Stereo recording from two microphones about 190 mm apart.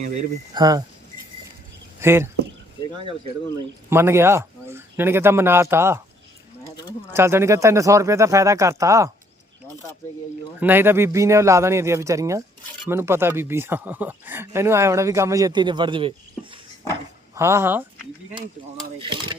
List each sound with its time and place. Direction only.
0.5 s speech: 20° right (ahead or behind)
2.0 s speech: 15° right (ahead or behind)
3.8 s speech: 15° right (ahead or behind)
7.1 s speech: 15° right (ahead or behind)
10.6 s speech: 10° right (ahead or behind); by 16.5 s 25° right (ahead or behind)
17.3 s speech: 15° right (ahead or behind)
18.9 s speech: 25° right (ahead or behind)